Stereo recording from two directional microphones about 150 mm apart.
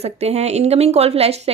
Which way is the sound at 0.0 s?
45° right (ahead or behind).